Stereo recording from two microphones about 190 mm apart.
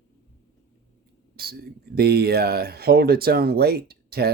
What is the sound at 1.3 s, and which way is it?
Speech, 55° right (ahead or behind).